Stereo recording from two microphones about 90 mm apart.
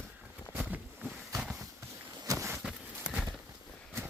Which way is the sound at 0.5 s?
20° right (ahead or behind).